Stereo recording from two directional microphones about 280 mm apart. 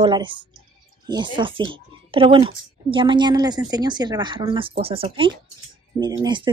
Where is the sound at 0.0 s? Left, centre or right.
Centre.